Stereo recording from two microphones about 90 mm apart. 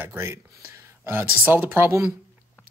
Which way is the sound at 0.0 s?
25° right (ahead or behind).